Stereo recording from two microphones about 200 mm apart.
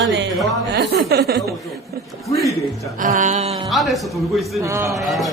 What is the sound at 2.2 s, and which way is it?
Speech, centre (ahead or behind).